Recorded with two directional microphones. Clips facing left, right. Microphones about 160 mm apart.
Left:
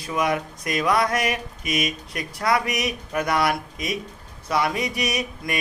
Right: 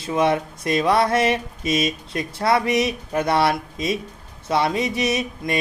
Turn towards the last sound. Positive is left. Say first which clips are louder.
# right 4 dB
turn(degrees=-25)  # may be behind; listen again after turning